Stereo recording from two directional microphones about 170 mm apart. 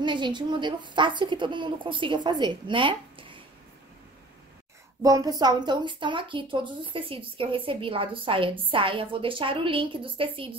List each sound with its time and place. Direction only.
0.0 s a woman's voice: 25° right (ahead or behind)
5.0 s a woman's voice: 20° right (ahead or behind)